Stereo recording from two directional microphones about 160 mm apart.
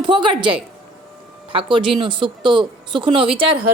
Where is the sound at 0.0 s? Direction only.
30° right (ahead or behind).